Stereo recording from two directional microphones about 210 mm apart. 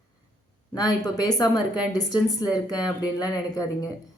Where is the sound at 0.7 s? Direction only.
20° left (ahead or behind).